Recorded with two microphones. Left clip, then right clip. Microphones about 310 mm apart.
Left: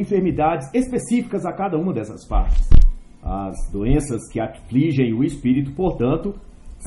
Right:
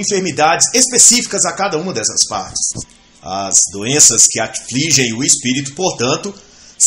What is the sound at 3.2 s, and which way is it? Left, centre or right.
Speech, right.